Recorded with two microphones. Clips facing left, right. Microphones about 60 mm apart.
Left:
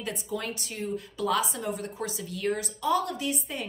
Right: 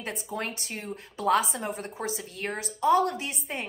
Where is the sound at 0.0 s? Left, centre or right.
Right.